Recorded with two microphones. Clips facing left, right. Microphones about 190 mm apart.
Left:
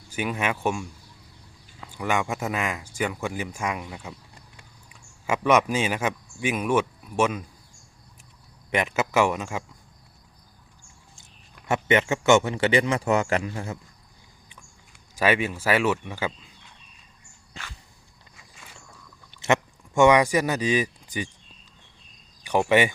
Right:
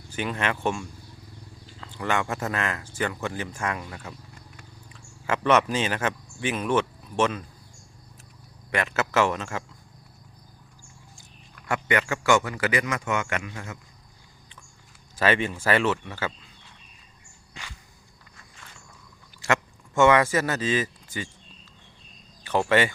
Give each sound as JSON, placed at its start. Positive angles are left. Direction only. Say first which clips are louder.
{"t": 0.1, "sound": "speech", "louder": "left 1 dB", "side_deg": 10}
{"t": 8.7, "sound": "speech", "louder": "left 2 dB", "side_deg": 15}
{"t": 11.1, "sound": "a man's voice", "louder": "right 2 dB", "side_deg": 20}
{"t": 15.1, "sound": "speech", "louder": "left 1 dB", "side_deg": 10}
{"t": 19.4, "sound": "speech", "louder": "left 3 dB", "side_deg": 20}
{"t": 22.4, "sound": "speech", "louder": "left 2 dB", "side_deg": 15}